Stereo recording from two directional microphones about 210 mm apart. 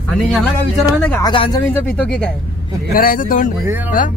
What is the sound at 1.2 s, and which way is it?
Speech, 20° left (ahead or behind).